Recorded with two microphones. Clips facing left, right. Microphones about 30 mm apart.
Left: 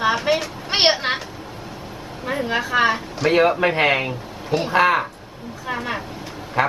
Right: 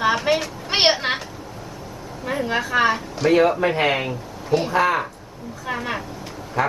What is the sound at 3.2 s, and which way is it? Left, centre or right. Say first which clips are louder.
Speech: even; left.